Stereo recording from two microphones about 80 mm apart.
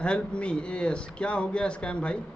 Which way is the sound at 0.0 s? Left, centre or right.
Centre.